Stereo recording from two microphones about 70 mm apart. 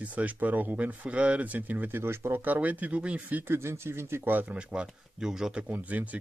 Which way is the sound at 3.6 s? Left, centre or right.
Right.